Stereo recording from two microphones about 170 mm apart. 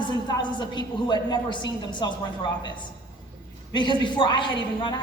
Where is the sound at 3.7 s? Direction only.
25° left (ahead or behind).